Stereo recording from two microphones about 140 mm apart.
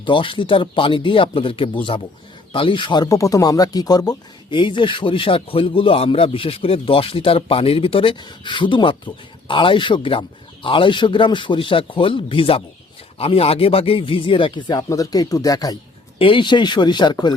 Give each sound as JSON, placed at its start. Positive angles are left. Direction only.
{"t": 0.0, "sound": "speech", "side_deg": 35}
{"t": 16.1, "sound": "speech", "side_deg": 40}